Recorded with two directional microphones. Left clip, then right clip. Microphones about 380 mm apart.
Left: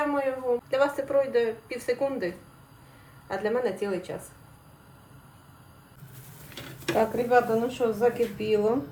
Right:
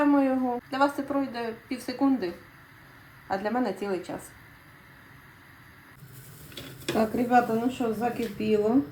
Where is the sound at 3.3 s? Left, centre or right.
Centre.